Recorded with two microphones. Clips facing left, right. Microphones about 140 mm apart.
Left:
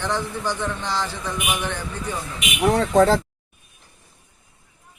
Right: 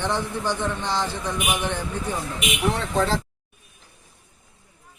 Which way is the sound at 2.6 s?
40° left (ahead or behind).